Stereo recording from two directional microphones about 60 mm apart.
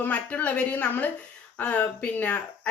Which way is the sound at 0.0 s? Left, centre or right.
Left.